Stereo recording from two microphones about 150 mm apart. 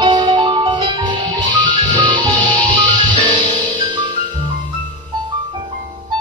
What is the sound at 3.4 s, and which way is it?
Music, 30° right (ahead or behind).